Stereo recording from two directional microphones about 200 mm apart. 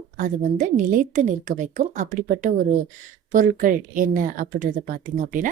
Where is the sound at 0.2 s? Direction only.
40° right (ahead or behind).